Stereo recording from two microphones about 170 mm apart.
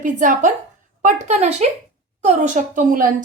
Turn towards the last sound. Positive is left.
turn(degrees=-50)  # may be behind; listen again after turning